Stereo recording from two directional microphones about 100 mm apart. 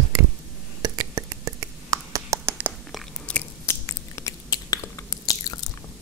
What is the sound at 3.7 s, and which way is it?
Finger snapping, 30° left (ahead or behind).